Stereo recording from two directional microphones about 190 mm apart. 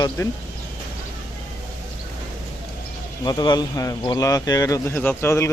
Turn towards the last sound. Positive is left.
turn(degrees=15)  # may be behind; listen again after turning